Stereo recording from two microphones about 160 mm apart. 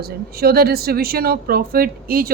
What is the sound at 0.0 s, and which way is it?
A woman's voice, 75° right (ahead or behind).